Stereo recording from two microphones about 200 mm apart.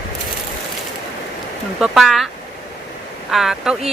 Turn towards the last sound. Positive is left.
turn(degrees=0)  # may be behind; listen again after turning